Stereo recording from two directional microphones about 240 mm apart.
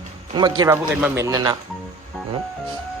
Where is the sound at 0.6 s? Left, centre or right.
Centre.